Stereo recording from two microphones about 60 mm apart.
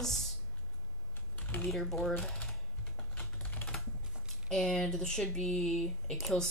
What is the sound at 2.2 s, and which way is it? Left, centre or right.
Speech, centre.